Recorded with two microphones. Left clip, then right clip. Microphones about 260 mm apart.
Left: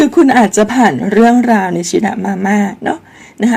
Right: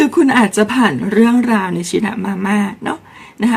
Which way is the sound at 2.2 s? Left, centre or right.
Right.